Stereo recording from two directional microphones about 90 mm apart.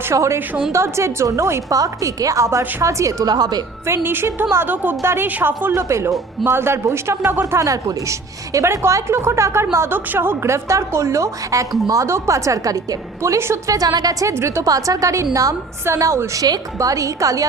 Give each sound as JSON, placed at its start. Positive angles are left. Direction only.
{"t": 0.1, "sound": "a woman's voice", "side_deg": -30}
{"t": 3.8, "sound": "a woman's voice", "side_deg": -30}